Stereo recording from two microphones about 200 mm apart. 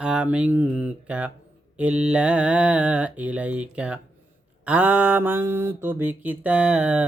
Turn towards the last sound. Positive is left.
turn(degrees=-5)  # may be behind; listen again after turning